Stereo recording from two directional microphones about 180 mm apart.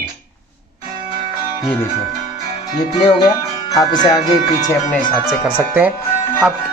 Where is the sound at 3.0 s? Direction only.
20° left (ahead or behind).